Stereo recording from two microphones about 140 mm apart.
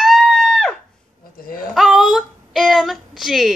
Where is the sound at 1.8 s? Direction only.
Centre (ahead or behind).